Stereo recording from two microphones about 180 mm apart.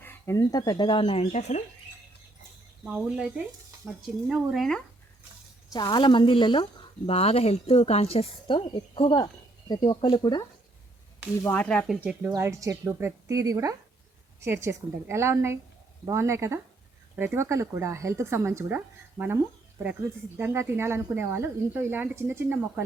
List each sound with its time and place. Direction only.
0.0 s speech: 15° left (ahead or behind); by 1.6 s 40° left (ahead or behind)
2.8 s speech: 5° right (ahead or behind)
5.7 s speech: 25° left (ahead or behind)
11.4 s speech: 10° left (ahead or behind)
11.9 s speech: 10° right (ahead or behind)